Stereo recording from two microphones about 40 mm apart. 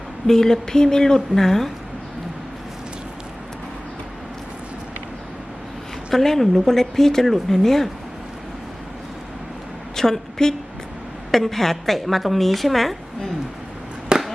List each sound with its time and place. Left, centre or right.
0.3 s a woman's voice: centre
6.1 s a woman's voice: centre
9.9 s a woman's voice: centre
14.1 s a sound: right